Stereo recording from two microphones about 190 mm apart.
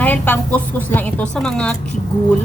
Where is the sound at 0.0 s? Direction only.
10° left (ahead or behind).